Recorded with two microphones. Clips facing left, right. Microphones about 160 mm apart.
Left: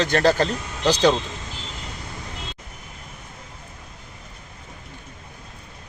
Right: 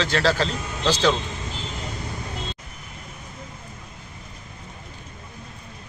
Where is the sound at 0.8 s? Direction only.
15° left (ahead or behind).